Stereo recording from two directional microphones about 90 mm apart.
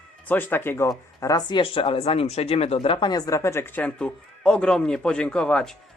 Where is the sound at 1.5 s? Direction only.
65° left (ahead or behind); by 3.1 s 85° left.